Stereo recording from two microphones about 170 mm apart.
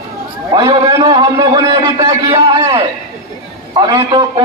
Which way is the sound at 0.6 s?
25° right (ahead or behind).